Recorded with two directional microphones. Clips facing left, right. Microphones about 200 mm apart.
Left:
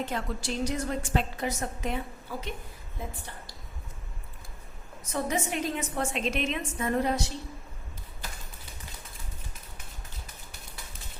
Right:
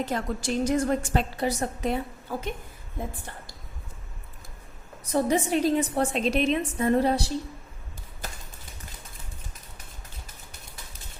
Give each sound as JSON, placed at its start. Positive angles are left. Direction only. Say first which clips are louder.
{"t": 0.0, "sound": "a woman's voice", "louder": "right 4 dB", "side_deg": -45}
{"t": 1.4, "sound": "a woman's voice", "louder": "right 5 dB", "side_deg": -35}
{"t": 2.3, "sound": "a woman's voice", "louder": "right 5 dB", "side_deg": -45}
{"t": 5.0, "sound": "a woman's voice", "louder": "right 6 dB", "side_deg": -35}